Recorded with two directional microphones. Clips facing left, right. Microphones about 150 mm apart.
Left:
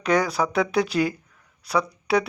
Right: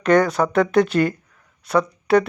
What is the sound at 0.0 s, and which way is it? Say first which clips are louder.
Speech: right 5 dB; 10° left (ahead or behind).